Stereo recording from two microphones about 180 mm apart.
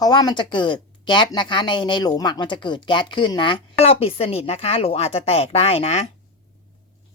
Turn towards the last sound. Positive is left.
turn(degrees=35)  # may be behind; listen again after turning